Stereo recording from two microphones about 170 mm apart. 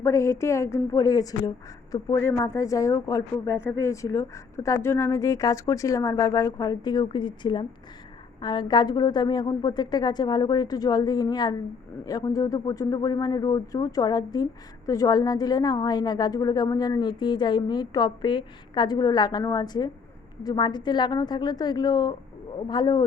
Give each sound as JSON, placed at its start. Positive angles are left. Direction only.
{"t": 0.0, "sound": "a woman's voice", "side_deg": 15}